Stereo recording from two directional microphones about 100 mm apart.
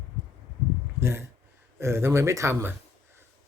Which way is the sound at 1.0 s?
25° right (ahead or behind).